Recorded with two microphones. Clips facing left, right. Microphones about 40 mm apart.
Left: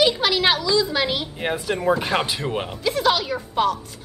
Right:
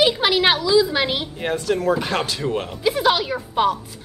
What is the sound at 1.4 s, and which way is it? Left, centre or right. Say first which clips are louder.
Speech: right 5 dB; centre.